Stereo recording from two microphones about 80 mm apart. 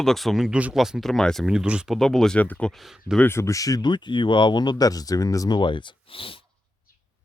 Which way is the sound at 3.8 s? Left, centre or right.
Left.